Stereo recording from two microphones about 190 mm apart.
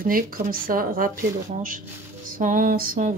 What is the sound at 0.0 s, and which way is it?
Speech, 50° right (ahead or behind).